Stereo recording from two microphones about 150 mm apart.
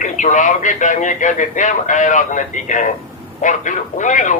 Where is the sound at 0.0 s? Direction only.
55° left (ahead or behind).